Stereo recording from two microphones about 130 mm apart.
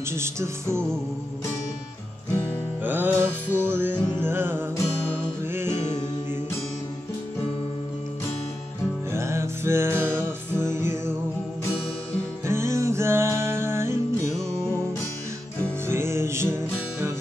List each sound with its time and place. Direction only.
0.1 s music: 20° right (ahead or behind)
2.8 s music: 15° right (ahead or behind)
9.1 s music: 20° right (ahead or behind)
12.4 s music: 20° right (ahead or behind)
15.9 s music: 20° right (ahead or behind)